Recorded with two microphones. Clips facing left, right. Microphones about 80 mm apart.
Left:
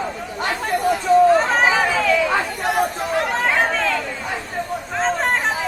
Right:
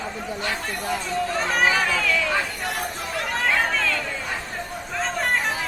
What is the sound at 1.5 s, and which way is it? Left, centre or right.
Chatter, centre.